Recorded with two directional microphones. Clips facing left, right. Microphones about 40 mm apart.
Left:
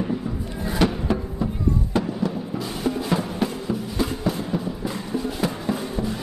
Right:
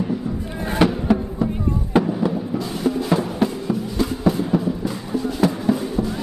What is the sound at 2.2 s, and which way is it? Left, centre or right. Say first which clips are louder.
Music: right 4 dB; centre.